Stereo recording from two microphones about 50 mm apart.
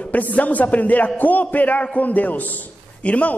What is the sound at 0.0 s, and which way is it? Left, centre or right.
A man's voice, left.